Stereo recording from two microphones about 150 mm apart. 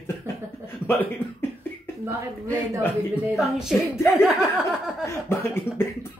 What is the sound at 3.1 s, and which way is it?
Speech, 5° right (ahead or behind).